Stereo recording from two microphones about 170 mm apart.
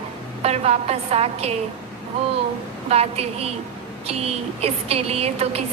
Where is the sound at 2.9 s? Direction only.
35° right (ahead or behind).